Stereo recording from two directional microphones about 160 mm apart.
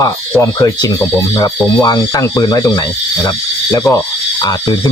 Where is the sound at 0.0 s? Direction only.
15° left (ahead or behind).